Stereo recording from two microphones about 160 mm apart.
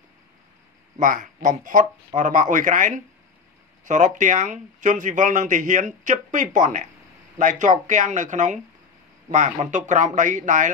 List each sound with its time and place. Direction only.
0.9 s speech: 50° right (ahead or behind)